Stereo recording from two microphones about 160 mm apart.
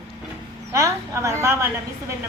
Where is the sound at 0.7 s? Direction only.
20° right (ahead or behind).